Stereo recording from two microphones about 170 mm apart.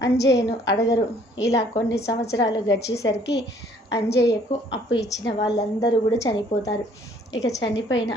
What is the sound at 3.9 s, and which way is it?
Speech, 90° left.